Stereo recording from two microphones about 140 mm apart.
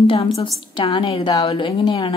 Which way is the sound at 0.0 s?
40° left (ahead or behind).